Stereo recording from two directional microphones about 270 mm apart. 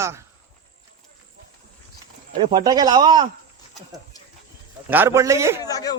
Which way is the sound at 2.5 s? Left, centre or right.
Centre.